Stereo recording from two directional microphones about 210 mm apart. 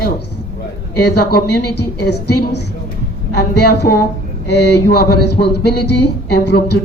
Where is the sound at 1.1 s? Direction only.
50° left (ahead or behind).